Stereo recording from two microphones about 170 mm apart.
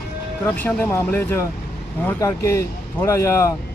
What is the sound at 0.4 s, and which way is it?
Speech, 10° left (ahead or behind).